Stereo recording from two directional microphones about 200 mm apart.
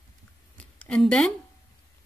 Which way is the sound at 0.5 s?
5° left (ahead or behind).